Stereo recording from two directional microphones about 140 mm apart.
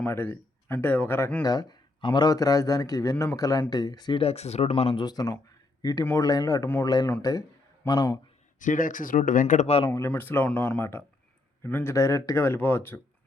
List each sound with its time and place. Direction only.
0.0 s speech: 15° left (ahead or behind)
1.4 s a man's voice: 30° left (ahead or behind)
4.2 s speech: 45° left (ahead or behind)
5.0 s a man's voice: 25° left (ahead or behind)
8.5 s speech: 70° left (ahead or behind)
10.1 s speech: 15° left (ahead or behind)